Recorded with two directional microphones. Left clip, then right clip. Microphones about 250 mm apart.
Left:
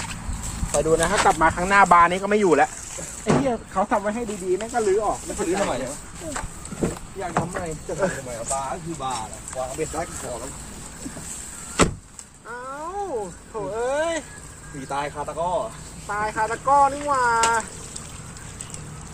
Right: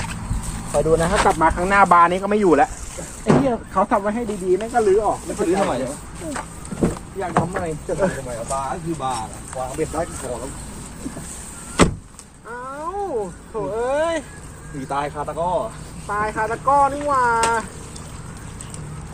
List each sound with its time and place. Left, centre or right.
0.7 s speech: left
3.4 s speech: centre; by 10.2 s right
12.5 s a sound: centre
13.6 s speech: centre
14.8 s speech: centre
16.0 s speech: centre